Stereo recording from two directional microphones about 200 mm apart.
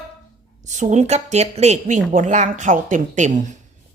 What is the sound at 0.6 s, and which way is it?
A woman's voice, 35° right (ahead or behind).